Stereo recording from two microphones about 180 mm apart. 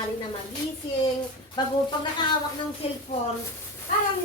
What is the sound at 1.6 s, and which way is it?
Speech, 25° left (ahead or behind).